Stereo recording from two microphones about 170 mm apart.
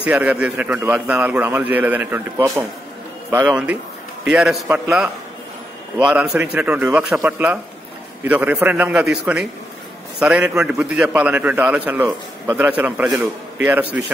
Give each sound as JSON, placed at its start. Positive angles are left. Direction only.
{"t": 0.0, "sound": "a man's voice", "side_deg": -10}